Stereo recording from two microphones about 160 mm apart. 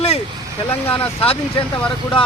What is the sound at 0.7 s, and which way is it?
Speech, 10° left (ahead or behind).